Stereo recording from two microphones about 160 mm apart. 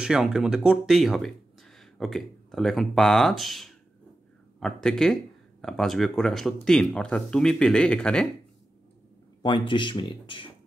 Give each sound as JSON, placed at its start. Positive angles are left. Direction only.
{"t": 0.0, "sound": "speech", "side_deg": -5}
{"t": 9.4, "sound": "speech", "side_deg": 30}